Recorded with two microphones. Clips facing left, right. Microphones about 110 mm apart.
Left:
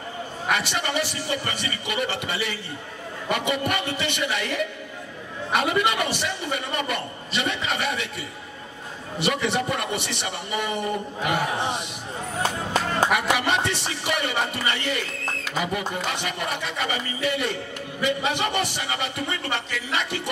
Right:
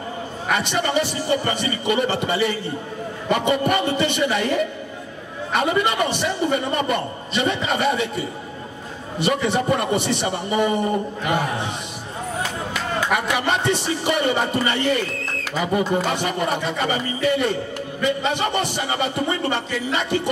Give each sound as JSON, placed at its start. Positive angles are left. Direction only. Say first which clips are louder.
{"t": 0.6, "sound": "speech", "louder": "right 5 dB", "side_deg": -35}
{"t": 13.1, "sound": "speech", "louder": "right 1 dB", "side_deg": -35}